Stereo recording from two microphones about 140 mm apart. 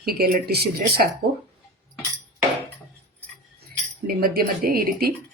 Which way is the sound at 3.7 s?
90° right.